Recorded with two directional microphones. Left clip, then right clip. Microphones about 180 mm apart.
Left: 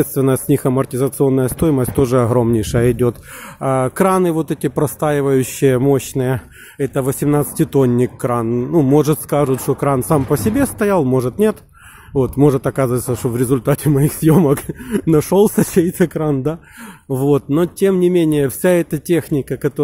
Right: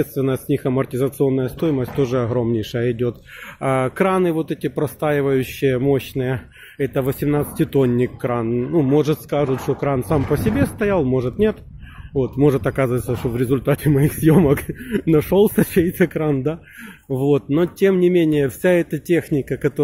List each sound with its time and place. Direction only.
0.0 s speech: 40° left (ahead or behind)
3.6 s a man's voice: 25° left (ahead or behind)